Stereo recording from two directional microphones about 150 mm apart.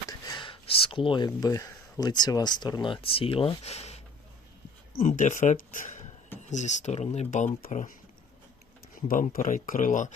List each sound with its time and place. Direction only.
0.3 s speech: 30° left (ahead or behind)
4.9 s speech: 60° left (ahead or behind)
9.0 s speech: 65° left (ahead or behind)